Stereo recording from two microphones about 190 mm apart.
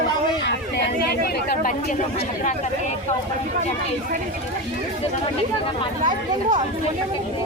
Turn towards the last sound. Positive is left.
turn(degrees=-40)  # may be behind; listen again after turning